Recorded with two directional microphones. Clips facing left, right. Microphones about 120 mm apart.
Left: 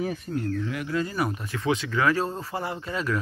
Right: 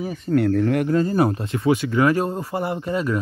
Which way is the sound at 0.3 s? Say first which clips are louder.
Right 10 dB; 75° right (ahead or behind).